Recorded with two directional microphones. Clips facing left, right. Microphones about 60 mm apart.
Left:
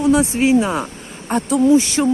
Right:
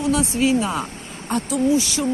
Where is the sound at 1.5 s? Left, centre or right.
Left.